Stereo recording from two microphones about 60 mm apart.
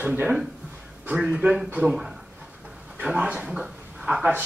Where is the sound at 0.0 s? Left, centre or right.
Right.